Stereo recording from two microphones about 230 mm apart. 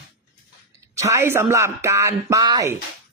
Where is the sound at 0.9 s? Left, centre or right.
Centre.